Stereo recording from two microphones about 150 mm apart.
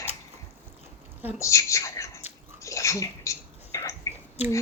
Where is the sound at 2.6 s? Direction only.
20° left (ahead or behind).